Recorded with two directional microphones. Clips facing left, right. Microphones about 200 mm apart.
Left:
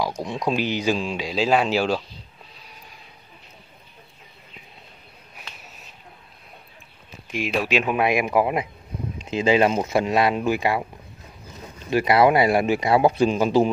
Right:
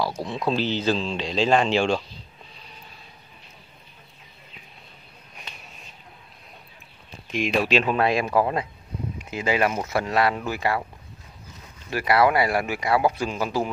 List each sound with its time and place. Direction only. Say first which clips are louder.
0.0 s speech: left 1 dB; 15° left (ahead or behind)
5.4 s a sound: even; 5° left (ahead or behind)
7.2 s speech: right 1 dB; 5° left (ahead or behind)
11.9 s speech: left 3 dB; 20° left (ahead or behind)